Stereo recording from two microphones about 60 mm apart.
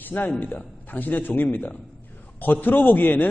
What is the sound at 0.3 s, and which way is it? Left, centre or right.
A man's voice, left.